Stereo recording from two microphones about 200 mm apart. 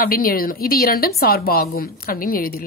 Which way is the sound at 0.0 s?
45° left (ahead or behind).